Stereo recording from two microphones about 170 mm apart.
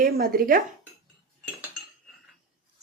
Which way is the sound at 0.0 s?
60° right (ahead or behind).